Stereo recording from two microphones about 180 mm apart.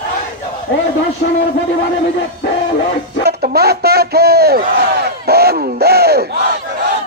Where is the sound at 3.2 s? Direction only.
60° right (ahead or behind).